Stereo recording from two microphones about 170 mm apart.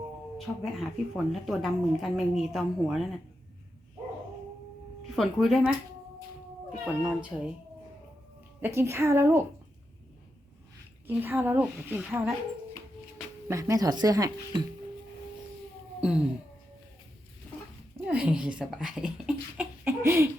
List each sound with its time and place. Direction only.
0.3 s a woman's voice: centre (ahead or behind)
5.1 s a woman's voice: centre (ahead or behind)
6.8 s a woman's voice: 5° right (ahead or behind)
8.6 s a woman's voice: 15° right (ahead or behind)
11.0 s a woman's voice: 10° right (ahead or behind)
13.5 s speech: 20° right (ahead or behind)
16.0 s a sound: 5° right (ahead or behind)
17.9 s a woman's voice: 10° right (ahead or behind)